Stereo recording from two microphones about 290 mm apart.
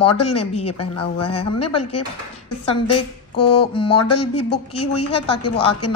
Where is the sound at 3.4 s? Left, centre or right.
Left.